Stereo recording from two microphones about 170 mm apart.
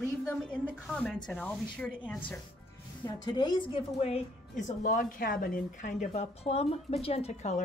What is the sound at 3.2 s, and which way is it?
Speech, 25° left (ahead or behind).